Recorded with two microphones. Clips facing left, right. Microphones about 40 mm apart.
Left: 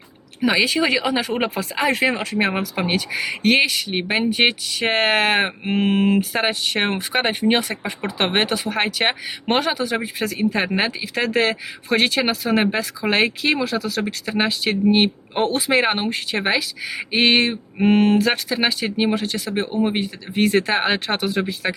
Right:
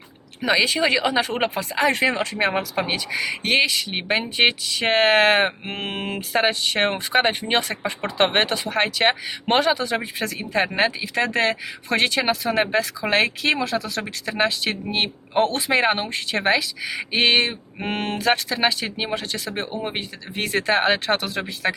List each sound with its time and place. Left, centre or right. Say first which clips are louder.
0.4 s speech: left 1 dB; centre
11.1 s speech: even; centre
11.9 s speech: left 2 dB; centre
12.1 s speech: left 1 dB; centre